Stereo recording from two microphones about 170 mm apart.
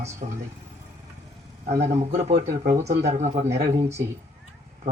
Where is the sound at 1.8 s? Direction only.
40° right (ahead or behind).